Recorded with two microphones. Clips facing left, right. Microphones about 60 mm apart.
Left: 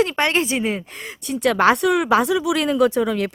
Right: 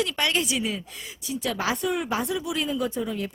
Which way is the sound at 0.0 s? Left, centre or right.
Left.